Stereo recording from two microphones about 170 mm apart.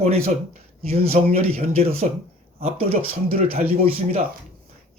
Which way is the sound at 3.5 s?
35° right (ahead or behind).